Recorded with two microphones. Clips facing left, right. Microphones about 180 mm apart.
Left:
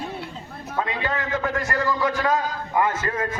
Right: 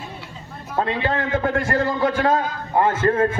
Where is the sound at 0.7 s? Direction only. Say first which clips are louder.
Right 4 dB; 30° right (ahead or behind).